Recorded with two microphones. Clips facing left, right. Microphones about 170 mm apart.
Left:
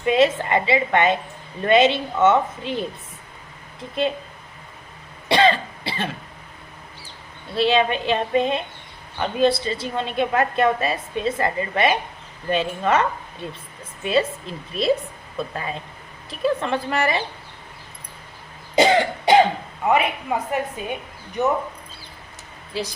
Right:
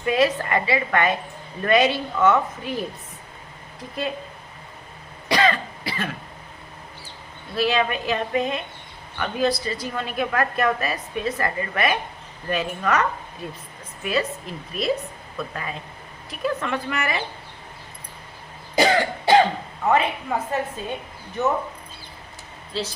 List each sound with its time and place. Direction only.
0.0 s a woman's voice: 25° left (ahead or behind)
5.3 s cough: 25° left (ahead or behind)
7.5 s a woman's voice: 25° left (ahead or behind)
18.8 s cough: 20° left (ahead or behind)
20.5 s a woman's voice: 15° left (ahead or behind)
22.7 s a woman's voice: 15° left (ahead or behind)